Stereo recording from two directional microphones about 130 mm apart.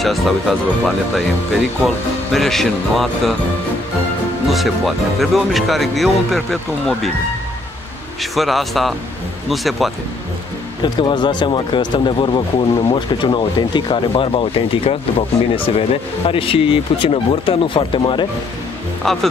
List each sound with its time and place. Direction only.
0.0 s speech: centre (ahead or behind)
2.3 s speech: centre (ahead or behind)
4.5 s speech: centre (ahead or behind)
8.2 s speech: centre (ahead or behind)
10.8 s speech: 35° left (ahead or behind)
19.0 s speech: 5° left (ahead or behind)